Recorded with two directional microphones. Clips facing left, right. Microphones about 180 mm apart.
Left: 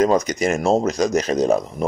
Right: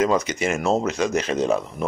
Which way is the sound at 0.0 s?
40° left (ahead or behind).